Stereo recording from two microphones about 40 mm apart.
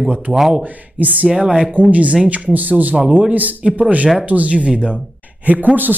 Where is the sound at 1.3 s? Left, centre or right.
Centre.